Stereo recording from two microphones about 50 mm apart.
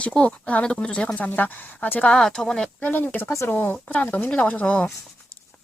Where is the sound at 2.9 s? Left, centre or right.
Left.